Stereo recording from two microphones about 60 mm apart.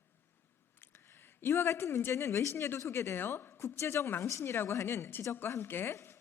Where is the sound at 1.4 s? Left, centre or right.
Left.